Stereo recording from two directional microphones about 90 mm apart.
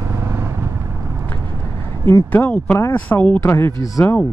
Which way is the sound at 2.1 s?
30° left (ahead or behind).